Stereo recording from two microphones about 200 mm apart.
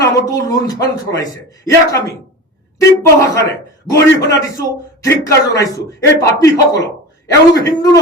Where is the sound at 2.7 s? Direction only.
15° left (ahead or behind).